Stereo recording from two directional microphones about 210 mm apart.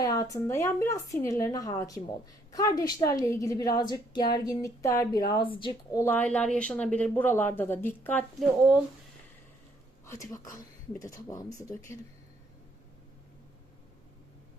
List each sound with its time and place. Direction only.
0.0 s a woman's voice: 15° left (ahead or behind)
6.0 s a woman's voice: 10° left (ahead or behind)
10.1 s a woman's voice: 15° left (ahead or behind)